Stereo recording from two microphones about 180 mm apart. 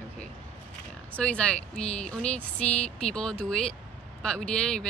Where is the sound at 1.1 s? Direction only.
5° left (ahead or behind).